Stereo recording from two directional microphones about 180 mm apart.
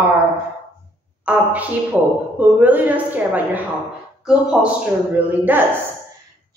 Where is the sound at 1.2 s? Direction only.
10° right (ahead or behind).